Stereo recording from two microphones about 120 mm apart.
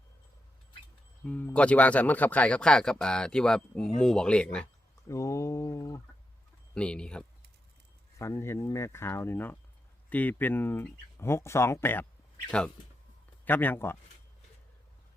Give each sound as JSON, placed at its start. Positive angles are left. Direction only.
{"t": 1.2, "sound": "speech", "side_deg": 10}
{"t": 5.0, "sound": "speech", "side_deg": 25}
{"t": 6.7, "sound": "speech", "side_deg": 10}
{"t": 8.2, "sound": "speech", "side_deg": 25}
{"t": 12.5, "sound": "speech", "side_deg": 5}